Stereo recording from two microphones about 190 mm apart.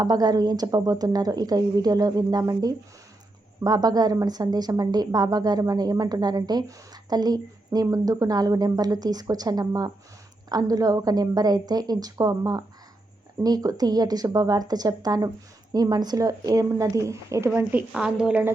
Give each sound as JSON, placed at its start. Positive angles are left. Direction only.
{"t": 0.0, "sound": "a woman's voice", "side_deg": -20}